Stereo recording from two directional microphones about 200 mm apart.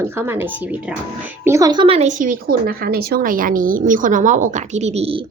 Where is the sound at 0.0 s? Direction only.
10° right (ahead or behind); by 5.2 s 30° right (ahead or behind).